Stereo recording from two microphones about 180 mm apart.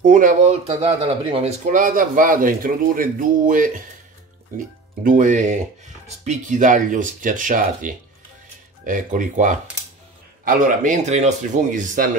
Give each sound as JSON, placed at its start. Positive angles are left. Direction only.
{"t": 0.0, "sound": "speech", "side_deg": -45}
{"t": 5.0, "sound": "speech", "side_deg": -45}